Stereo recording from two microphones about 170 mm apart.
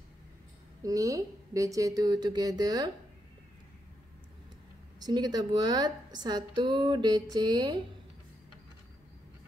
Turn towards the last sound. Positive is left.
turn(degrees=-25)  # may be behind; listen again after turning